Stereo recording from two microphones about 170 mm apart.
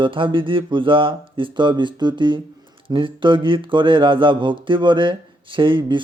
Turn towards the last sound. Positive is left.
turn(degrees=-30)  # may be behind; listen again after turning